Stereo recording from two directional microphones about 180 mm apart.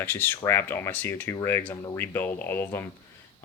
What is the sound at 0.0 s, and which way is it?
Speech, 10° left (ahead or behind).